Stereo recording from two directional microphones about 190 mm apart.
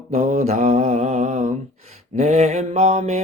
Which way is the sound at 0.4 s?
40° right (ahead or behind).